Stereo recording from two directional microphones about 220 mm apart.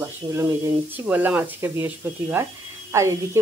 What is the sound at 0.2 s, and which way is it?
Speech, 20° right (ahead or behind).